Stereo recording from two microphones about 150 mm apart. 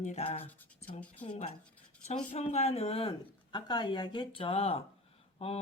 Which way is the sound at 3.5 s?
30° left (ahead or behind).